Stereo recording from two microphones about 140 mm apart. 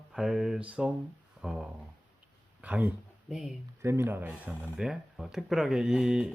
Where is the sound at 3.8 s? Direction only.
15° right (ahead or behind).